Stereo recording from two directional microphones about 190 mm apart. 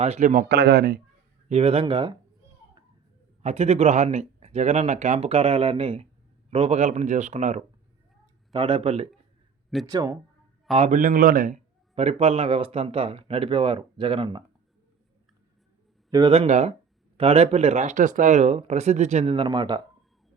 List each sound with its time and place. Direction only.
0.0 s speech: 35° right (ahead or behind); by 0.9 s 55° right (ahead or behind)
1.5 s speech: 30° right (ahead or behind)
3.4 s a man's voice: 35° right (ahead or behind)
8.5 s speech: 25° right (ahead or behind)
9.8 s speech: 20° right (ahead or behind)
10.8 s a man's voice: 40° right (ahead or behind)
16.0 s a man's voice: 20° right (ahead or behind)